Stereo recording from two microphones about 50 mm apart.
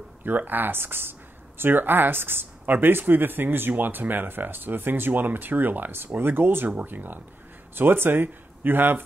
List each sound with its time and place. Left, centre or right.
0.2 s speech: right